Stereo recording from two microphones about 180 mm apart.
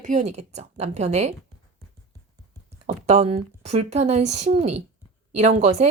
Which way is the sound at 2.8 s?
40° right (ahead or behind).